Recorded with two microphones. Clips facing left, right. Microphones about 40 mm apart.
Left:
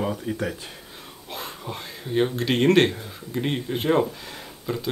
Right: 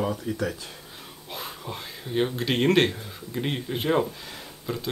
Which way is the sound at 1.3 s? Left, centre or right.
Centre.